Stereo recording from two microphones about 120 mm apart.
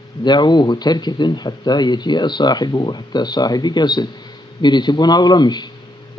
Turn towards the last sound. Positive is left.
turn(degrees=35)  # may be behind; listen again after turning